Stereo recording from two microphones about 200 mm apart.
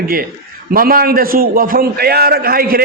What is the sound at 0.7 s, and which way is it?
A man's voice, 45° right (ahead or behind).